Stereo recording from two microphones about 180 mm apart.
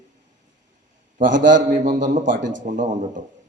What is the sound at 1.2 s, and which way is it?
A man's voice, 45° right (ahead or behind).